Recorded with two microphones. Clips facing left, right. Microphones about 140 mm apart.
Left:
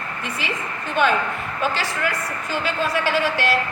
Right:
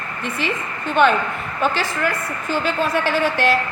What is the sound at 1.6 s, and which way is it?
A woman's voice, 55° right (ahead or behind).